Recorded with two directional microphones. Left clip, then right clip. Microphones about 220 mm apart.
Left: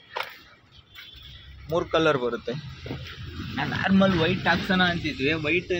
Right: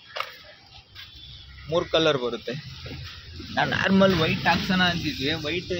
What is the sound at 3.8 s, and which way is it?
Speech, 20° right (ahead or behind).